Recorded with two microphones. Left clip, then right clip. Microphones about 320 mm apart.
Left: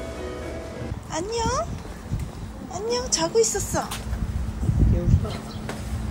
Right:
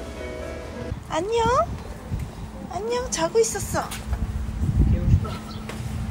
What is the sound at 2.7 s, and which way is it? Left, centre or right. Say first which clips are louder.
A child's voice: left 1 dB; centre.